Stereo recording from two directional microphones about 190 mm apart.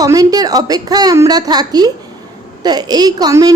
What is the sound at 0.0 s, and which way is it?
A woman's voice, 20° right (ahead or behind).